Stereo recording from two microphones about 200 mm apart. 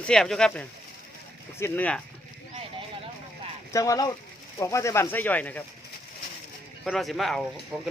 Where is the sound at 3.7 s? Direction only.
15° left (ahead or behind).